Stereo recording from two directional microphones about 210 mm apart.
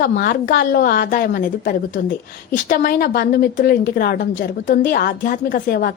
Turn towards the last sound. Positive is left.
turn(degrees=45)  # may be behind; listen again after turning